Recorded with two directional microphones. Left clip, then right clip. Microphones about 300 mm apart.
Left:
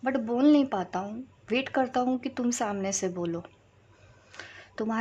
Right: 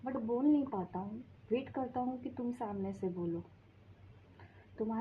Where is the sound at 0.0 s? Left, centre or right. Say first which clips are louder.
Left 9 dB; left.